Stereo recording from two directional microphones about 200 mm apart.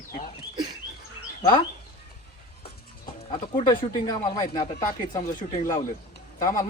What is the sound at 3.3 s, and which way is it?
Speech, 20° left (ahead or behind).